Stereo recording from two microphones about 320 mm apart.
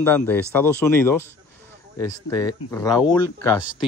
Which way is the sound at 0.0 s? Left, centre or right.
Centre.